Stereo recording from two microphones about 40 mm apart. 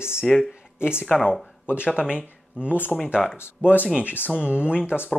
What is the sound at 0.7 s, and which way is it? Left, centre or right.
Speech, left.